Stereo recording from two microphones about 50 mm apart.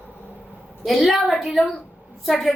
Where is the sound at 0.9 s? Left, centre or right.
Centre.